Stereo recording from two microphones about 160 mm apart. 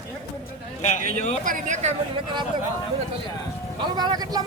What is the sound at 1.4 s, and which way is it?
Speech, 50° right (ahead or behind).